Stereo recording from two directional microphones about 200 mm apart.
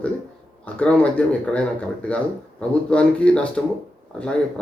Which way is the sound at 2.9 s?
5° left (ahead or behind).